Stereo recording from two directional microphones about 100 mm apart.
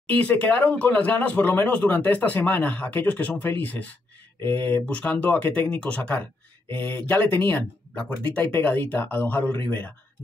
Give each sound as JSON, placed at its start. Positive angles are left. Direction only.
{"t": 0.0, "sound": "speech", "side_deg": 15}